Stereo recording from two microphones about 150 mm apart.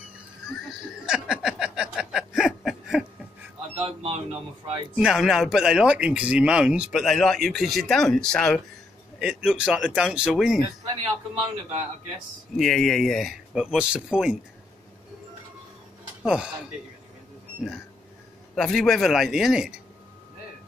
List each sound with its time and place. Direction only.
0.5 s a sound: 5° right (ahead or behind)
3.8 s speech: 45° right (ahead or behind)
4.9 s speech: 5° right (ahead or behind)
9.2 s speech: 5° right (ahead or behind)
12.5 s speech: centre (ahead or behind)
16.2 s speech: 5° right (ahead or behind)
18.5 s speech: 5° left (ahead or behind)